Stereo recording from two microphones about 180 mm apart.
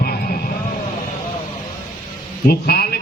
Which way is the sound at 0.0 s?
55° left (ahead or behind).